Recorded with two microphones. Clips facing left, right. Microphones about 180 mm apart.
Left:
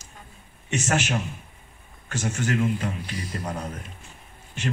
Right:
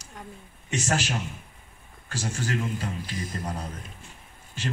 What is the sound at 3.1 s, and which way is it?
Speech, 50° right (ahead or behind).